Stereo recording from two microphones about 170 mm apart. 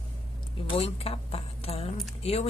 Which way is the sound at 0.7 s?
35° left (ahead or behind).